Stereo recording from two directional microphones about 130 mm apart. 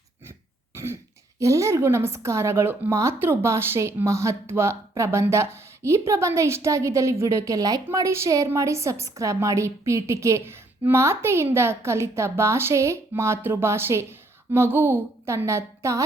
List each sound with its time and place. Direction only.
0.3 s throat clearing: 20° right (ahead or behind)
1.4 s a woman's voice: 25° right (ahead or behind)